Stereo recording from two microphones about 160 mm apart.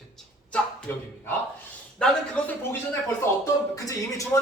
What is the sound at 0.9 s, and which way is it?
Speech, 15° left (ahead or behind).